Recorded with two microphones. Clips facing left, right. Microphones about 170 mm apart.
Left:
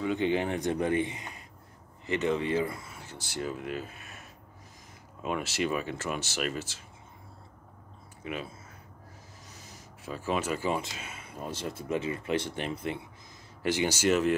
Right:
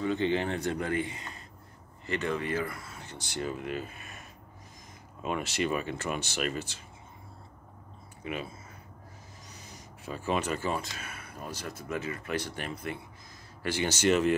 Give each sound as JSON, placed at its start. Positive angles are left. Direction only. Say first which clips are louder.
{"t": 0.0, "sound": "speech", "louder": "even", "side_deg": 10}
{"t": 2.9, "sound": "speech", "louder": "right 1 dB", "side_deg": 5}
{"t": 8.2, "sound": "speech", "louder": "even", "side_deg": 0}
{"t": 9.5, "sound": "speech", "louder": "right 2 dB", "side_deg": 5}